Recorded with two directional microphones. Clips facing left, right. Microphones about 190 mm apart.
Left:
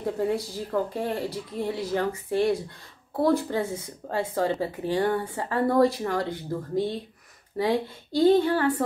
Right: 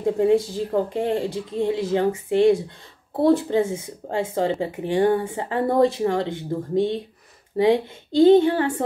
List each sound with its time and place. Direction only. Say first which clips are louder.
0.0 s speech: right 8 dB; 25° right (ahead or behind)